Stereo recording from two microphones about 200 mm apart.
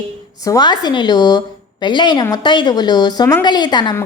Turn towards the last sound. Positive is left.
turn(degrees=20)  # may be behind; listen again after turning